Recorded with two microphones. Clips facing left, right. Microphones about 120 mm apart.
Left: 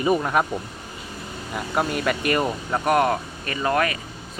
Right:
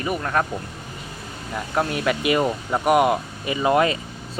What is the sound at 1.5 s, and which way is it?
A man's voice, 5° left (ahead or behind).